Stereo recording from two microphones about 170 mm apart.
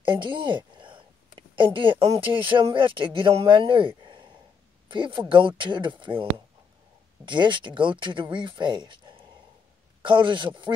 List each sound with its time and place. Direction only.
0.0 s a sound: 30° right (ahead or behind)
2.4 s speech: 30° right (ahead or behind)
10.0 s speech: 30° right (ahead or behind)